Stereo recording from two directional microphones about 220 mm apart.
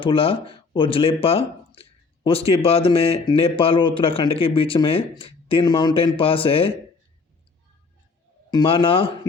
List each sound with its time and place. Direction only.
0.0 s speech: 25° left (ahead or behind)
8.4 s speech: 20° left (ahead or behind)